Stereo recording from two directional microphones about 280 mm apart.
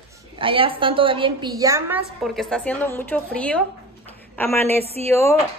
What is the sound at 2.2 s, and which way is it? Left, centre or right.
A woman's voice, centre.